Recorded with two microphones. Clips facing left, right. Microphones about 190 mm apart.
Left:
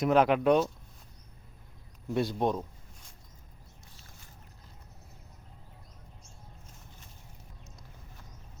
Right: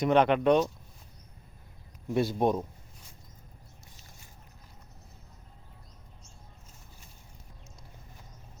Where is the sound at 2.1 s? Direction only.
5° right (ahead or behind).